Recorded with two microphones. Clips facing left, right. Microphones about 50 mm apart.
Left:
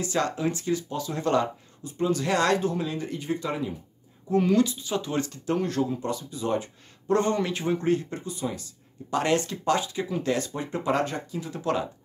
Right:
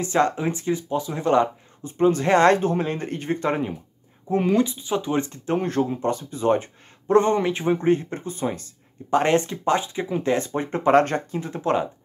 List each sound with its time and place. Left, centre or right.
0.0 s speech: right
1.9 s speech: right
4.3 s speech: right